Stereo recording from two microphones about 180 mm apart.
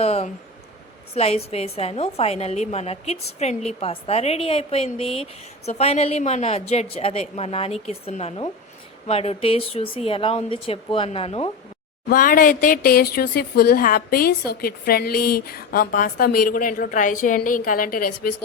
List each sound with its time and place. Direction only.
0.0 s a woman's voice: 35° left (ahead or behind)
12.0 s speech: 50° left (ahead or behind)